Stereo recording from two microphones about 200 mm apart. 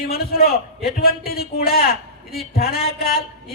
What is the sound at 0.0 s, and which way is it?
A man's voice, 50° left (ahead or behind).